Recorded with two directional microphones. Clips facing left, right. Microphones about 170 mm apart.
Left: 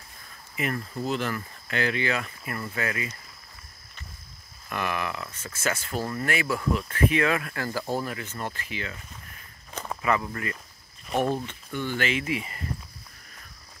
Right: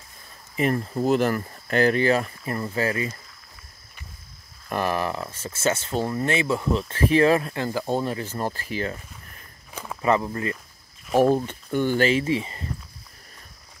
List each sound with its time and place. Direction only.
0.6 s speech: 35° right (ahead or behind)
4.6 s speech: 35° right (ahead or behind)
10.0 s speech: 30° right (ahead or behind)
11.1 s speech: 5° right (ahead or behind)
11.3 s speech: 45° right (ahead or behind); by 12.6 s 30° right (ahead or behind)